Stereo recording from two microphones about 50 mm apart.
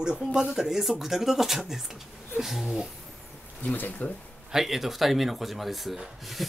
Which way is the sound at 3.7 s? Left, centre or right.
Left.